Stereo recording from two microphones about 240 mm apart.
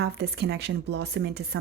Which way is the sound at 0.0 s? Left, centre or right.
Right.